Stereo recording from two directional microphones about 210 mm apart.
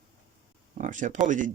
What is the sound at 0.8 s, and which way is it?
Speech, 35° right (ahead or behind).